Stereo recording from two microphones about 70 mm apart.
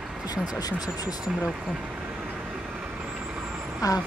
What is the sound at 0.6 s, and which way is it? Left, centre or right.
Speech, left.